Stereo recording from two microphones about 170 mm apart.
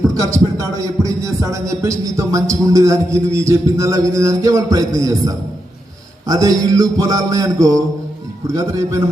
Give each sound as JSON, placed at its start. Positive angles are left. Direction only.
{"t": 0.1, "sound": "a man's voice", "side_deg": -20}